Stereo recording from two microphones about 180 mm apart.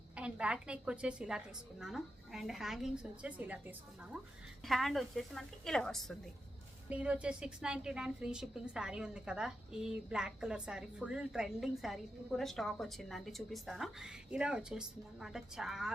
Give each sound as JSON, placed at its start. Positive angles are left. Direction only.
{"t": 0.2, "sound": "a woman's voice", "side_deg": -5}
{"t": 4.6, "sound": "a woman's voice", "side_deg": 0}